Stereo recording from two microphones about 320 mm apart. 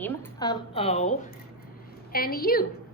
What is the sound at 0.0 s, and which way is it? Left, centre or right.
A woman's voice, centre.